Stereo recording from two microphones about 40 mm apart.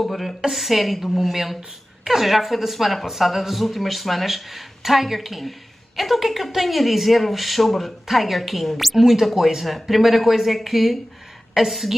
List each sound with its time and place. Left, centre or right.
0.0 s speech: centre